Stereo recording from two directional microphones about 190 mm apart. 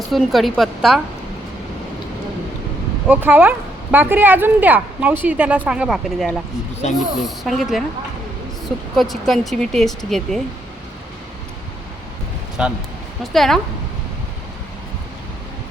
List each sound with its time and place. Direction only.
0.1 s speech: centre (ahead or behind)
3.1 s a woman's voice: 10° right (ahead or behind)
9.0 s speech: centre (ahead or behind)
12.6 s speech: 5° right (ahead or behind)